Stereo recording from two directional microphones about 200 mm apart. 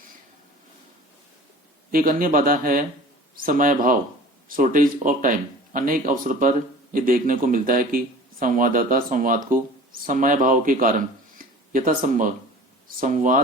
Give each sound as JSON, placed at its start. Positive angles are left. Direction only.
{"t": 1.9, "sound": "speech", "side_deg": -45}